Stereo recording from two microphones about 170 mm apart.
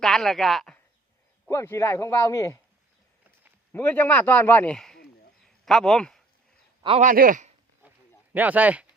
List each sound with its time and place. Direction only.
0.0 s speech: centre (ahead or behind)
1.5 s a man's voice: 15° left (ahead or behind)
3.7 s a man's voice: 10° left (ahead or behind)
5.4 s a sound: 5° left (ahead or behind)
7.0 s a man's voice: 55° right (ahead or behind)
7.9 s a sound: 10° right (ahead or behind)